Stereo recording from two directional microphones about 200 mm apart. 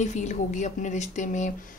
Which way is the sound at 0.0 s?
35° left (ahead or behind).